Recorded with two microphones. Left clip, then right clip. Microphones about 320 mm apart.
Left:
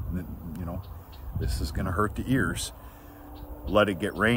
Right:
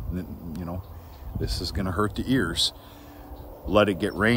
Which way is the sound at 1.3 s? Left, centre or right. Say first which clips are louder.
Right 5 dB; centre.